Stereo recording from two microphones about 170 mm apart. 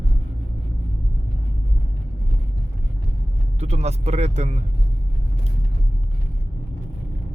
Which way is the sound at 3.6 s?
40° right (ahead or behind).